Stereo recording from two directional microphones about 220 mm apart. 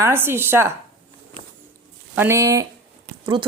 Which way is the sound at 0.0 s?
10° right (ahead or behind).